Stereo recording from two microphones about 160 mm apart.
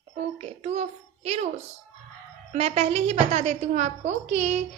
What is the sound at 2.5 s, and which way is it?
A woman's voice, 40° right (ahead or behind).